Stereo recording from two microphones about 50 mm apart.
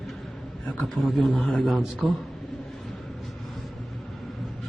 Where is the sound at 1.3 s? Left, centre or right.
Left.